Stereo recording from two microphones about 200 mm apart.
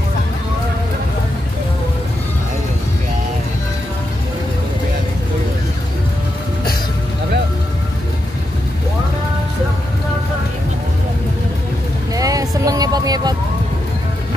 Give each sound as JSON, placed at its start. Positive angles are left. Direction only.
{"t": 12.2, "sound": "music", "side_deg": -15}